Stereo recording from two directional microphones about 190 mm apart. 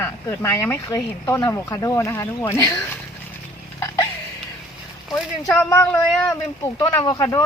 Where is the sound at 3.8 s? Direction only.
15° left (ahead or behind).